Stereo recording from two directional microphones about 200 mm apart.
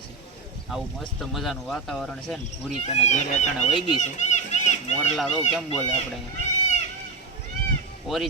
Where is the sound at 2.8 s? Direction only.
35° left (ahead or behind).